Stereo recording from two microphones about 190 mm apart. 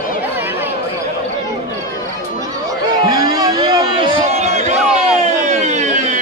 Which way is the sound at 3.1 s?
20° right (ahead or behind).